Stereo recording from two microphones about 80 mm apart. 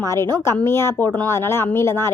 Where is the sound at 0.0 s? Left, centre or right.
Left.